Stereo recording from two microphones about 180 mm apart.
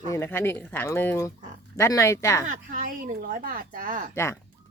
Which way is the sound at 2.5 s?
50° right (ahead or behind).